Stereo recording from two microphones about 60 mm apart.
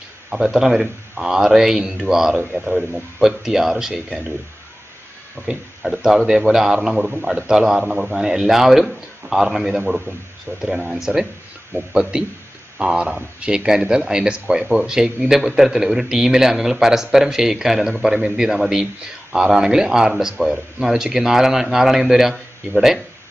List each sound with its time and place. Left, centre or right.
0.3 s speech: centre
6.0 s speech: centre